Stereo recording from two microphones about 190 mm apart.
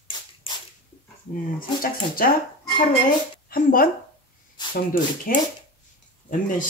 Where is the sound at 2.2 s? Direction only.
50° left (ahead or behind).